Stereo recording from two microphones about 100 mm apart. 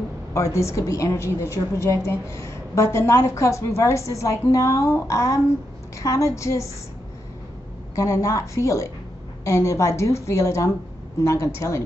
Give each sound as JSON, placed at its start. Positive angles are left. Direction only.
{"t": 0.3, "sound": "a woman's voice", "side_deg": 30}
{"t": 7.9, "sound": "a woman's voice", "side_deg": 30}